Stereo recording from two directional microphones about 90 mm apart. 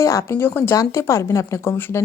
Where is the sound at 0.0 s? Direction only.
35° left (ahead or behind).